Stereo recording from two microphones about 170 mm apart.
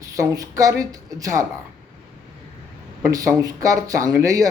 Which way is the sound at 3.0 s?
20° right (ahead or behind).